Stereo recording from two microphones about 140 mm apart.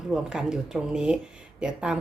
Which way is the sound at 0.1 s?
5° right (ahead or behind).